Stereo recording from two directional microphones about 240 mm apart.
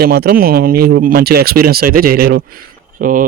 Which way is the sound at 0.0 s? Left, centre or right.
Right.